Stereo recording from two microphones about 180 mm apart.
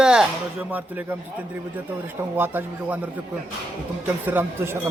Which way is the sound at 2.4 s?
10° right (ahead or behind).